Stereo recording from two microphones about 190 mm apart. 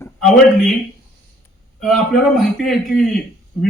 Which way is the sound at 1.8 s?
Centre (ahead or behind).